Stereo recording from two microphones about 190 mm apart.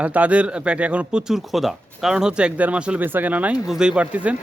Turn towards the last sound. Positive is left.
turn(degrees=-5)  # may be behind; listen again after turning